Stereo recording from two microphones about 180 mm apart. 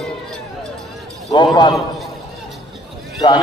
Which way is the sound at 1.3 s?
25° left (ahead or behind).